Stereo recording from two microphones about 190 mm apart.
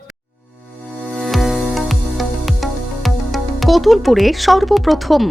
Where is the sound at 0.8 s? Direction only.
Centre (ahead or behind).